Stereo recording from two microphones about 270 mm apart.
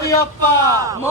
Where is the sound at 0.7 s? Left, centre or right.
Centre.